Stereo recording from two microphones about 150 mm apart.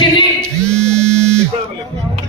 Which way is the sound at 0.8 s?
5° left (ahead or behind).